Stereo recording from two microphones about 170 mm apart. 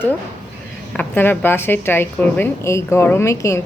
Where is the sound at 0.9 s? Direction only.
10° left (ahead or behind).